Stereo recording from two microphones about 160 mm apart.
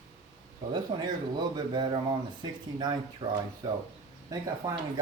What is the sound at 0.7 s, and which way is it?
Speech, 25° right (ahead or behind).